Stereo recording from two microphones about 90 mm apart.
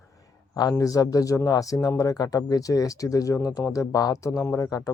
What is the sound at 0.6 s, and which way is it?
Speech, 45° left (ahead or behind).